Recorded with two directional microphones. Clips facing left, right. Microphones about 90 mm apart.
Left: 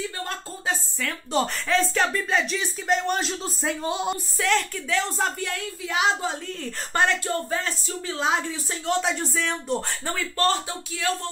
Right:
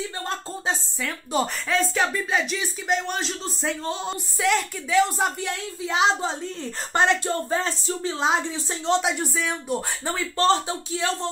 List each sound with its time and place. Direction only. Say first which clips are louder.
1.0 s speech: even; 5° right (ahead or behind)
4.4 s a woman's voice: right 2 dB; 10° right (ahead or behind)
9.3 s a woman's voice: even; 5° right (ahead or behind); by 11.2 s 25° right (ahead or behind)